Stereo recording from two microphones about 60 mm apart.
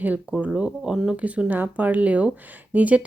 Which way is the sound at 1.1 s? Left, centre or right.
Right.